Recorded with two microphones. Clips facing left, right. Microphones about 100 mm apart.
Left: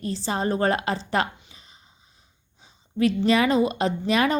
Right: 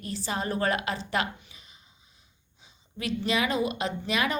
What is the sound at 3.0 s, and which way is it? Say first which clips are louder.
A woman's voice: left 8 dB; 40° left (ahead or behind).